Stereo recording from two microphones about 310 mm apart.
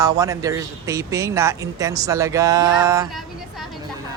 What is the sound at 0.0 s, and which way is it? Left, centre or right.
A man's voice, centre.